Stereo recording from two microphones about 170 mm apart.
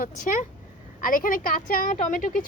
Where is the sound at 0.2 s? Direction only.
50° left (ahead or behind).